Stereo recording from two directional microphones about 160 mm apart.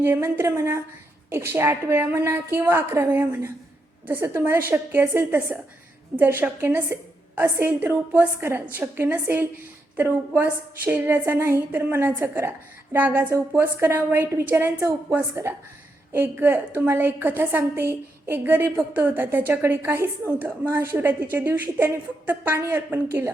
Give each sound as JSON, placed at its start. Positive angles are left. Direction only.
{"t": 0.0, "sound": "a woman's voice", "side_deg": -15}